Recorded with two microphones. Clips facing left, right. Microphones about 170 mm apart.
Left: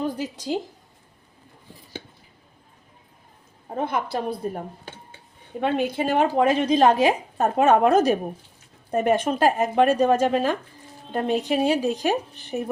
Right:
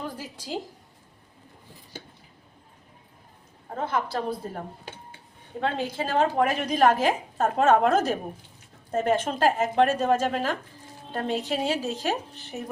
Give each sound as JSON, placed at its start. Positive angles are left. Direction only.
{"t": 0.0, "sound": "a woman's voice", "side_deg": 20}
{"t": 3.8, "sound": "speech", "side_deg": 15}